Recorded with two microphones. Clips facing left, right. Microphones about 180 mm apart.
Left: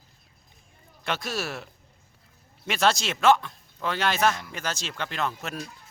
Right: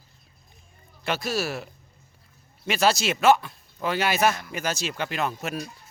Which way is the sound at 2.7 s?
5° right (ahead or behind).